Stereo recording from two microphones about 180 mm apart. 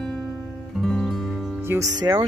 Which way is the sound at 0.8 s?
Centre (ahead or behind).